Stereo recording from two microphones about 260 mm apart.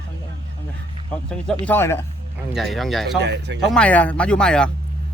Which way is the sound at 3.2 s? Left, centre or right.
Right.